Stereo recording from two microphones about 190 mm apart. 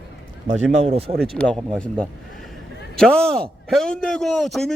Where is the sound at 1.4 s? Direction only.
5° left (ahead or behind).